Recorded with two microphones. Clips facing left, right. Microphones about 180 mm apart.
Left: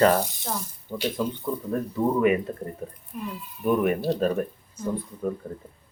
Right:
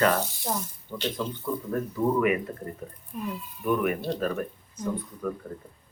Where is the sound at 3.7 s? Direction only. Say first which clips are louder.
Left 3 dB; 30° left (ahead or behind).